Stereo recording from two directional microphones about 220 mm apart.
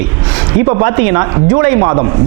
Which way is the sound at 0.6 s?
20° right (ahead or behind).